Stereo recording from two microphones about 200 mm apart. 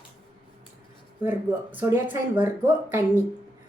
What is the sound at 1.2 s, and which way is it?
Speech, 10° right (ahead or behind).